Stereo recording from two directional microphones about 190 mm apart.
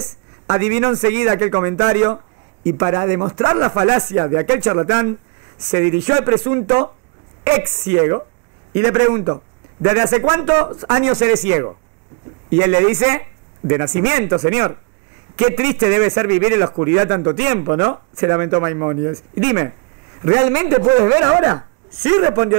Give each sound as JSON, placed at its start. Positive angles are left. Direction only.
{"t": 0.0, "sound": "a man's voice", "side_deg": -20}
{"t": 21.3, "sound": "a man's voice", "side_deg": -25}